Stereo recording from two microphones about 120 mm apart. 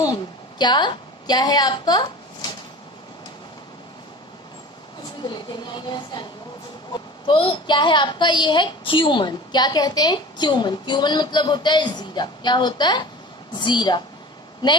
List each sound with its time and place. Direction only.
0.1 s a woman's voice: 40° left (ahead or behind)
5.2 s a woman's voice: 40° left (ahead or behind)
7.2 s a woman's voice: 45° left (ahead or behind)